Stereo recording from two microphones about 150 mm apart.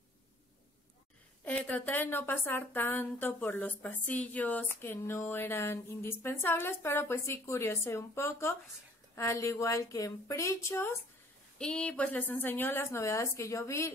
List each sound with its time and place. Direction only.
1.4 s a woman's voice: 10° left (ahead or behind)
11.5 s speech: 5° left (ahead or behind)